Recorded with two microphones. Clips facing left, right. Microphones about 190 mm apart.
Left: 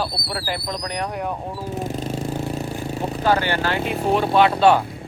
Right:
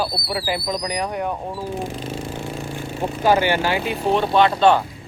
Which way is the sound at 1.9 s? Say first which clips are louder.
Left 3 dB; 40° left (ahead or behind).